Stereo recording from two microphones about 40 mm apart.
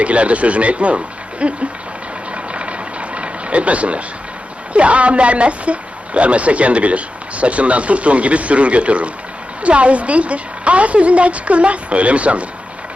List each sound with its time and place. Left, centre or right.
0.0 s speech: right
2.3 s vehicle: right
4.7 s speech: right